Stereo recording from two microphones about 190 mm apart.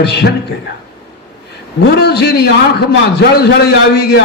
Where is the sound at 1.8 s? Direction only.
60° left (ahead or behind).